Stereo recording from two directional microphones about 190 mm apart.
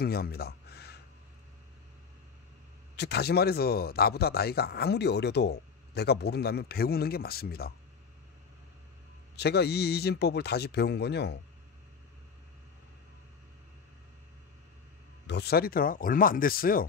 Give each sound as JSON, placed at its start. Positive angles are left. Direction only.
{"t": 0.0, "sound": "a sound", "side_deg": 55}
{"t": 3.0, "sound": "speech", "side_deg": 60}
{"t": 9.4, "sound": "speech", "side_deg": 60}
{"t": 15.2, "sound": "speech", "side_deg": 60}